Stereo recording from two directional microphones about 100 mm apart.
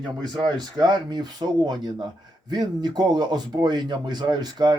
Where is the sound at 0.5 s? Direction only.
45° right (ahead or behind).